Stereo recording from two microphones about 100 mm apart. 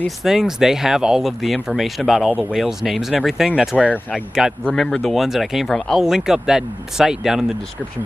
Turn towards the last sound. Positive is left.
turn(degrees=-5)  # may be behind; listen again after turning